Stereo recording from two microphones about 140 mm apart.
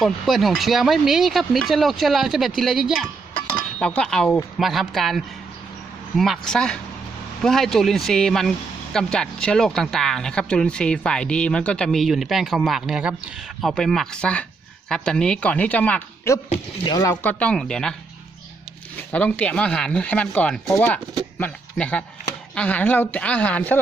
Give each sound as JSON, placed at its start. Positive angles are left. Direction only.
{"t": 0.0, "sound": "speech", "side_deg": 0}
{"t": 3.8, "sound": "speech", "side_deg": 5}
{"t": 17.2, "sound": "speech", "side_deg": 10}
{"t": 19.1, "sound": "speech", "side_deg": 10}